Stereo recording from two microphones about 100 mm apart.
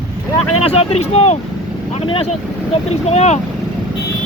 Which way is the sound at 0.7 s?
90° left.